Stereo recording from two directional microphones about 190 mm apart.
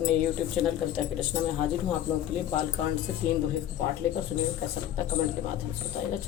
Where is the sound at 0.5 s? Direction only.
5° left (ahead or behind).